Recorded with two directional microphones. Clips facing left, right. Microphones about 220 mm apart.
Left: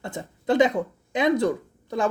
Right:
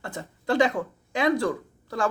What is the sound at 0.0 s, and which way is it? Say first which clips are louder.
Speech: left 3 dB; 20° left (ahead or behind).